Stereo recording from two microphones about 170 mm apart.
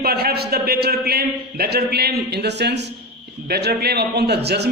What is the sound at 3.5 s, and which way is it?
A man's voice, 70° right (ahead or behind).